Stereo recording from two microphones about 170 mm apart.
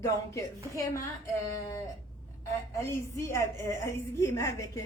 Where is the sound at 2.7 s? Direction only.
15° left (ahead or behind).